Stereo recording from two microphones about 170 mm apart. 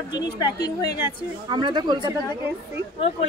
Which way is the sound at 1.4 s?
30° right (ahead or behind).